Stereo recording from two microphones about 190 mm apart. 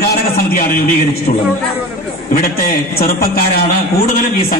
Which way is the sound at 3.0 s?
50° left (ahead or behind).